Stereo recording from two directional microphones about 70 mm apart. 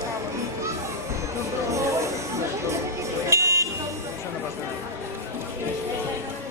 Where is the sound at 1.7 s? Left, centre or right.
Right.